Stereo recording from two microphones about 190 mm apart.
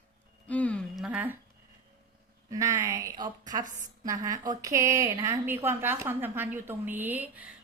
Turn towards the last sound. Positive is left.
turn(degrees=-10)  # may be behind; listen again after turning